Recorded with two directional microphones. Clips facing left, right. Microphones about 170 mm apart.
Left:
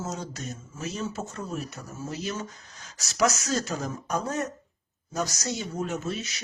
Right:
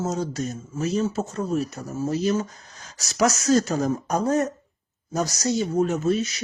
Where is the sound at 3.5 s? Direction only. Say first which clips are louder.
Right 9 dB; 45° right (ahead or behind).